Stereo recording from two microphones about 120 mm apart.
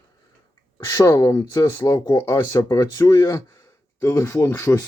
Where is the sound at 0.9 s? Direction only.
30° left (ahead or behind).